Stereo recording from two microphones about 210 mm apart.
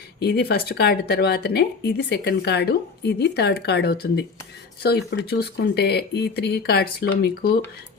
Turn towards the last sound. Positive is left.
turn(degrees=50)  # may be behind; listen again after turning